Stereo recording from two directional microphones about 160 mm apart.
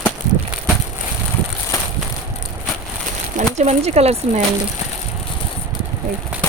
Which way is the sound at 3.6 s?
40° right (ahead or behind).